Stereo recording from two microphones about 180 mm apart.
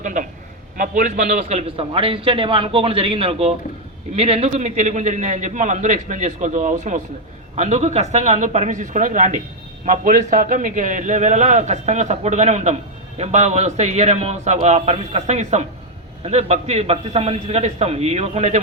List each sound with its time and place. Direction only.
0.0 s a man's voice: 45° right (ahead or behind)